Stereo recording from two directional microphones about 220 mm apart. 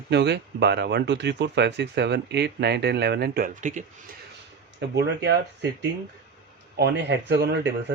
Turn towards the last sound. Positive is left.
turn(degrees=-50)  # may be behind; listen again after turning